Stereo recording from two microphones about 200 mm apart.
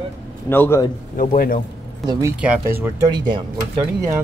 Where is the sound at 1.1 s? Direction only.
45° left (ahead or behind).